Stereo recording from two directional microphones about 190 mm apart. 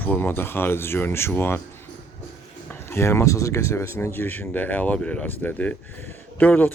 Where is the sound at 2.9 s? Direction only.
15° left (ahead or behind).